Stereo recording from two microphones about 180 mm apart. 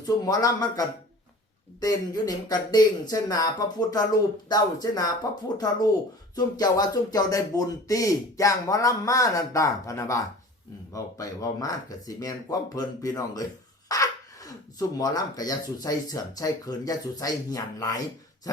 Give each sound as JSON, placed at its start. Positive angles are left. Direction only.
{"t": 0.0, "sound": "speech", "side_deg": 20}